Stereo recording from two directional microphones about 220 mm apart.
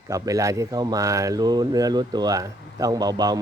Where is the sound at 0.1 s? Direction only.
15° right (ahead or behind).